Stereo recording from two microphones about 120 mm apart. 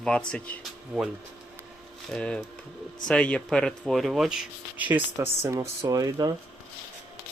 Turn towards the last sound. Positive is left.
turn(degrees=-30)  # may be behind; listen again after turning